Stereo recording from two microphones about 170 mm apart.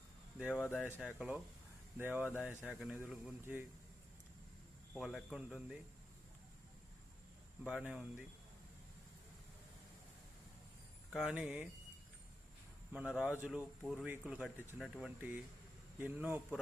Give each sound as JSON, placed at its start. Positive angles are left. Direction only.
{"t": 0.3, "sound": "speech", "side_deg": -5}
{"t": 4.9, "sound": "speech", "side_deg": 0}
{"t": 7.7, "sound": "speech", "side_deg": -5}
{"t": 11.1, "sound": "speech", "side_deg": -5}
{"t": 12.9, "sound": "speech", "side_deg": -5}